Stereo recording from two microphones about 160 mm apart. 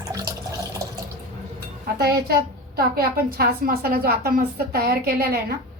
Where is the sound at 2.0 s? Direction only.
75° right (ahead or behind).